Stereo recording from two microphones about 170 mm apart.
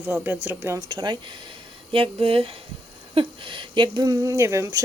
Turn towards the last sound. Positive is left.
turn(degrees=-15)  # may be behind; listen again after turning